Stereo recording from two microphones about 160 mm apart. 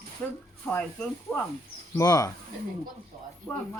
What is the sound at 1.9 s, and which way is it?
Speech, 20° left (ahead or behind).